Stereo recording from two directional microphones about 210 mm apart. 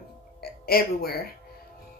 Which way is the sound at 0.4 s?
45° left (ahead or behind).